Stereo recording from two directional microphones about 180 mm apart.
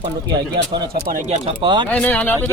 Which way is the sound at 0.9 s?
45° right (ahead or behind).